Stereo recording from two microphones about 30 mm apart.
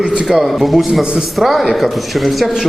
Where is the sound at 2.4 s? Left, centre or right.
Centre.